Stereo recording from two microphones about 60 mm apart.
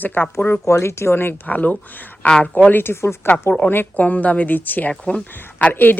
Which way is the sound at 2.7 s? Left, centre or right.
Left.